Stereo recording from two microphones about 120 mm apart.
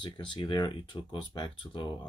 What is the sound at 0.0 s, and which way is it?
Speech, 45° left (ahead or behind).